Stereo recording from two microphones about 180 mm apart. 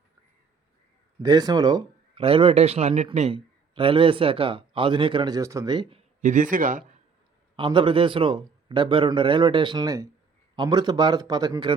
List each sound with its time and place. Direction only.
1.2 s speech: 20° right (ahead or behind)
6.2 s a man's voice: 45° right (ahead or behind)
7.5 s speech: 25° right (ahead or behind)